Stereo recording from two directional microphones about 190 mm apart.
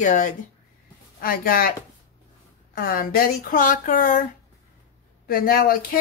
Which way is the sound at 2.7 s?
45° left (ahead or behind).